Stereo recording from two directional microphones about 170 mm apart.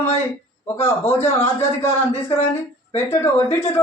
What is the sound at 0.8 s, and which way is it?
A man's voice, 15° left (ahead or behind).